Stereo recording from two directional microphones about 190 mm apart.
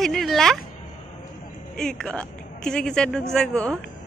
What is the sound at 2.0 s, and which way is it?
A woman's voice, 5° left (ahead or behind).